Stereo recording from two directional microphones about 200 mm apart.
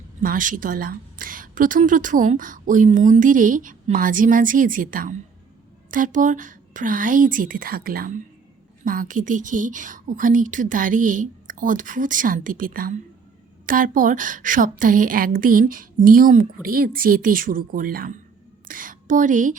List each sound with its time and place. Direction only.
0.2 s a woman's voice: 40° right (ahead or behind)